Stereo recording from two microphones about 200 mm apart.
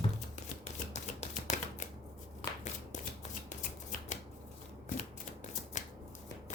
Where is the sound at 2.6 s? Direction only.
35° left (ahead or behind).